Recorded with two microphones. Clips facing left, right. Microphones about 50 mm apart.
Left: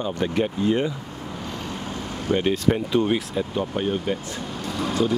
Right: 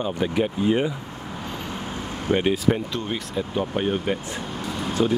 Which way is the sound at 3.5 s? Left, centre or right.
Centre.